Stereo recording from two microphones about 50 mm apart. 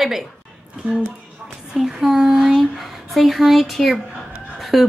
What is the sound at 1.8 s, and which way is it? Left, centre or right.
A woman's voice, centre.